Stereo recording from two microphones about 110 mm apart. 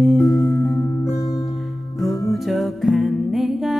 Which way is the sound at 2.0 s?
Centre (ahead or behind).